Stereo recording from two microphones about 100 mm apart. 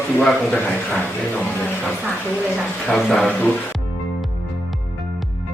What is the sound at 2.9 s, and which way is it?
Speech, 5° left (ahead or behind).